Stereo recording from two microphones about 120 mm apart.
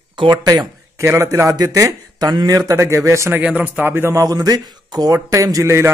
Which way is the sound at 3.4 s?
10° right (ahead or behind).